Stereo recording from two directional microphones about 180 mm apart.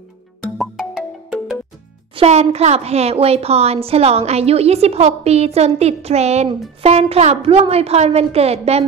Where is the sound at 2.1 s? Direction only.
35° right (ahead or behind).